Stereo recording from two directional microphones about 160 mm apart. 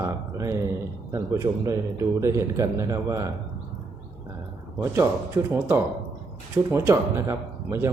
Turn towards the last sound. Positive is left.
turn(degrees=-15)  # may be behind; listen again after turning